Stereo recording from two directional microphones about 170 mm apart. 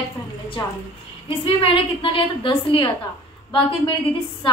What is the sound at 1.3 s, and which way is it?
A woman's voice, 35° left (ahead or behind).